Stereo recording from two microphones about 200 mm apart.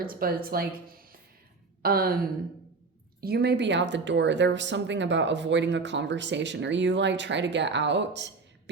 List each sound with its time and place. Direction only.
0.0 s a woman's voice: 45° right (ahead or behind)
1.8 s a woman's voice: 50° right (ahead or behind)